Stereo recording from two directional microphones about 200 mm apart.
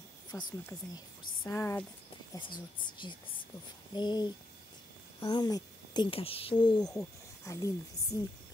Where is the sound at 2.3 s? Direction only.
25° left (ahead or behind).